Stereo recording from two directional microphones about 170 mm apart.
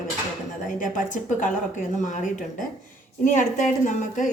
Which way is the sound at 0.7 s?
50° left (ahead or behind).